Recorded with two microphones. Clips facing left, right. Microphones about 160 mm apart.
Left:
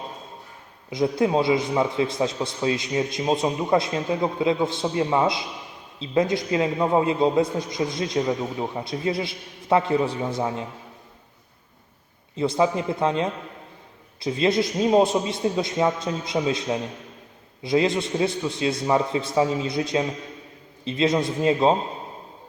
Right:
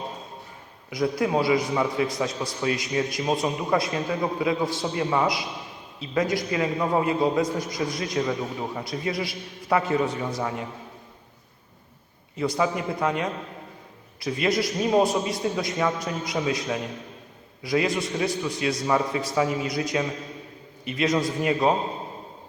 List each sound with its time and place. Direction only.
0.9 s a man's voice: 25° left (ahead or behind)
12.4 s a man's voice: 25° left (ahead or behind)